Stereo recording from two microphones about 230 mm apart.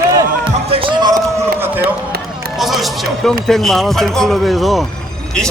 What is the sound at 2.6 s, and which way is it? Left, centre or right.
Speech, centre.